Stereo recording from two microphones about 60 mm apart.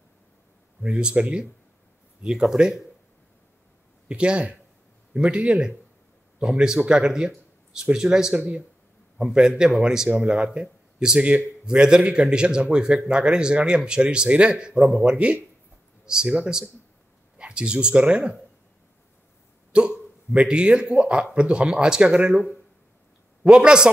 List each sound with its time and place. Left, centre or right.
0.8 s speech: centre
4.1 s speech: centre
19.7 s speech: centre
23.4 s speech: centre